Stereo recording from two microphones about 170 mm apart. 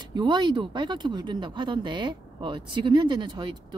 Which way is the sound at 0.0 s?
25° right (ahead or behind).